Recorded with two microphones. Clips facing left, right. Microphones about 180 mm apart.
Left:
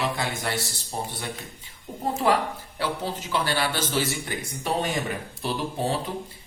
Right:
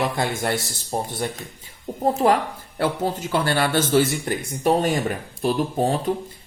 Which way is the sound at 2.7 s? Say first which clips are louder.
Right 7 dB; 45° right (ahead or behind).